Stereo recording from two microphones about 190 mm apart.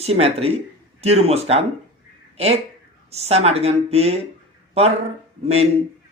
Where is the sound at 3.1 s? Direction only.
35° right (ahead or behind).